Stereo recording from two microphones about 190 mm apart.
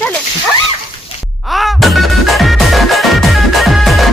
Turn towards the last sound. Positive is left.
turn(degrees=0)  # may be behind; listen again after turning